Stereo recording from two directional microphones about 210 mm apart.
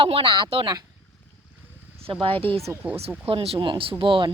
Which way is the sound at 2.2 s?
25° right (ahead or behind).